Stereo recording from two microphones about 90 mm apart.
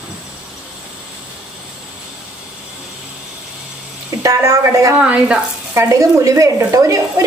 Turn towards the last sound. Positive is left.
turn(degrees=-40)  # may be behind; listen again after turning